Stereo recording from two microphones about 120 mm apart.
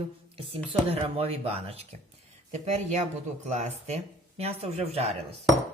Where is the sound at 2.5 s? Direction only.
75° right (ahead or behind).